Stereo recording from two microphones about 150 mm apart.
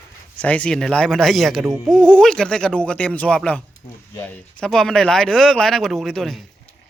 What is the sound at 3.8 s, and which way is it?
Speech, 45° left (ahead or behind).